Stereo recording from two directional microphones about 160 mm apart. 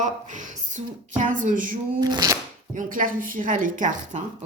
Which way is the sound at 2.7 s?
55° right (ahead or behind).